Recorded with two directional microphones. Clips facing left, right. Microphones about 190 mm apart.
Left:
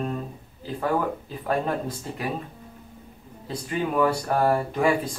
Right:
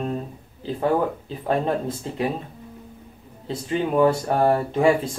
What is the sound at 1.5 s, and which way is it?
Speech, 25° right (ahead or behind).